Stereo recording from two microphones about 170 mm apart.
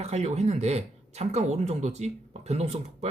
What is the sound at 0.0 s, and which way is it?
Speech, 40° right (ahead or behind).